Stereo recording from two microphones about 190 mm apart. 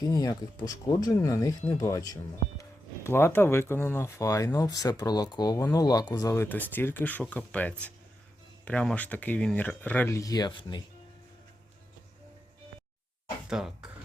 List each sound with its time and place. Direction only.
0.0 s speech: 20° left (ahead or behind)
13.5 s speech: 5° right (ahead or behind)